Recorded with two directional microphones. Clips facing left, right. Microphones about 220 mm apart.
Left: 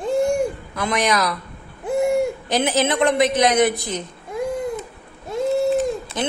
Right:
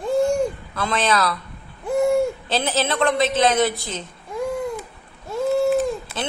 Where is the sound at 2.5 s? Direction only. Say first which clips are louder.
Left 3 dB; 15° left (ahead or behind).